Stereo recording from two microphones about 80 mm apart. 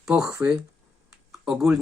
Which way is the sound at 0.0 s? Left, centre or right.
Centre.